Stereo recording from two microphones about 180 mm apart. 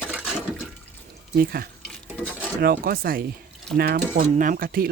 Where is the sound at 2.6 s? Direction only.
55° right (ahead or behind).